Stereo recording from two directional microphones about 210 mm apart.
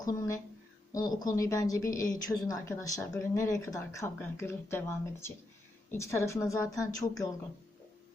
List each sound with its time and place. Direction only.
0.0 s a woman's voice: 15° left (ahead or behind)